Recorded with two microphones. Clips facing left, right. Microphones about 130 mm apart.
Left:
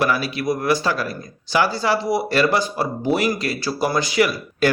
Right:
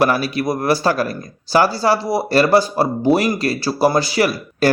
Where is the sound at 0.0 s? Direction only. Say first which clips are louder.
Right 4 dB; 40° right (ahead or behind).